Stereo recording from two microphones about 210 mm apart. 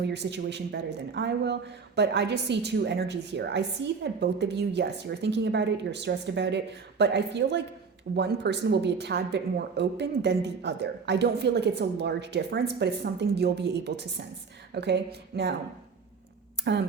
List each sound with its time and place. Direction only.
0.0 s a woman's voice: 55° right (ahead or behind)
16.6 s speech: 55° right (ahead or behind)